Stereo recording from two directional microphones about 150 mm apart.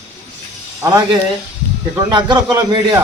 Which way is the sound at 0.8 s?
25° right (ahead or behind).